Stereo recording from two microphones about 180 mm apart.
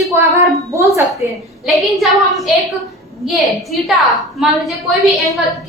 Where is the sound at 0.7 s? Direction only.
15° right (ahead or behind).